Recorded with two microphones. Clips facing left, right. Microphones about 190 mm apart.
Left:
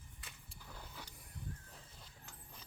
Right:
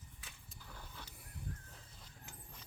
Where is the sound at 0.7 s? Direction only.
10° left (ahead or behind).